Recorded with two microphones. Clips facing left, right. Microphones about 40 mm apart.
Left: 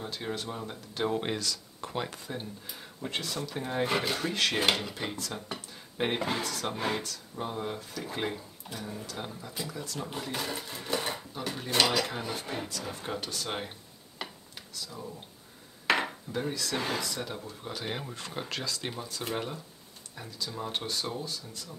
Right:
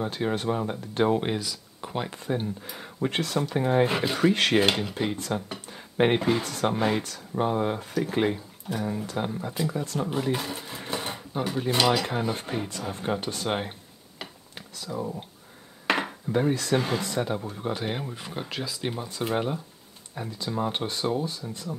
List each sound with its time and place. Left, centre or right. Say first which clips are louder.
0.0 s speech: right 8 dB; right
1.0 s speech: right 5 dB; centre
3.0 s speech: right 8 dB; right
3.5 s speech: right 6 dB; right
4.2 s speech: right 8 dB; right
5.7 s a sound: right 9 dB; right
6.1 s speech: right 7 dB; centre
6.4 s speech: right 7 dB; right
8.0 s speech: right 9 dB; right
8.8 s speech: right 9 dB; right
10.0 s speech: right 5 dB; centre
15.9 s dishes: right 3 dB; right
17.0 s speech: right 8 dB; right